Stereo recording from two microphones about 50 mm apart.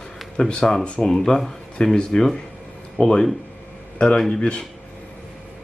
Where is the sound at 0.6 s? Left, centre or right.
Centre; by 4.6 s left.